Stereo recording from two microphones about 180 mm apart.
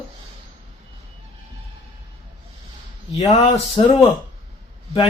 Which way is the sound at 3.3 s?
35° left (ahead or behind).